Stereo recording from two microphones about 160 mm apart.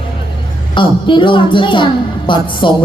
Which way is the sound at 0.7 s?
30° left (ahead or behind).